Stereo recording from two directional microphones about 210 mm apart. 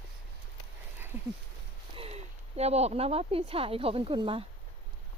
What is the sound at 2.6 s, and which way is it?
Speech, 30° right (ahead or behind).